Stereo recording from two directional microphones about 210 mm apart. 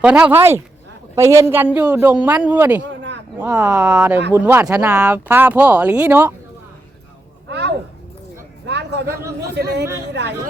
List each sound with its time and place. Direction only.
0.0 s speech: 10° right (ahead or behind)
7.4 s a sound: 55° right (ahead or behind)
9.6 s speech: 55° right (ahead or behind)